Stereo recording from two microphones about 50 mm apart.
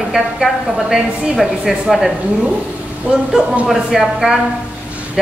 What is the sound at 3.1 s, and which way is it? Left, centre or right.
Speech, centre.